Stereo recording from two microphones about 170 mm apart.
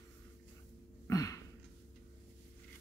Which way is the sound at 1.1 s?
20° left (ahead or behind).